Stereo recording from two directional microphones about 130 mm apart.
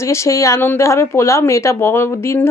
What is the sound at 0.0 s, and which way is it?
Speech, 20° left (ahead or behind).